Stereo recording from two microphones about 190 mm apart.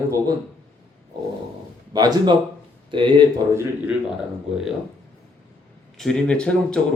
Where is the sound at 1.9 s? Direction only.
20° right (ahead or behind).